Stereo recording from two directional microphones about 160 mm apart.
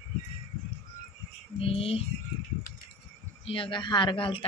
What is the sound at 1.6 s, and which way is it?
Speech, 35° left (ahead or behind).